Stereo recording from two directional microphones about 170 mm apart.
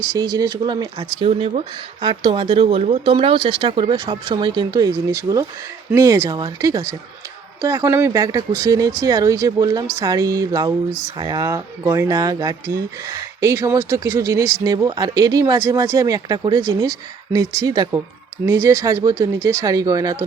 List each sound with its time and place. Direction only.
0.0 s speech: 20° right (ahead or behind)